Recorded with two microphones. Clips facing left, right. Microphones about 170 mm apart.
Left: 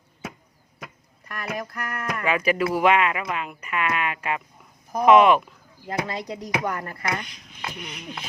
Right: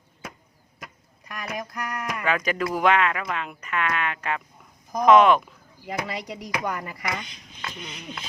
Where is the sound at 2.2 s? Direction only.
5° left (ahead or behind).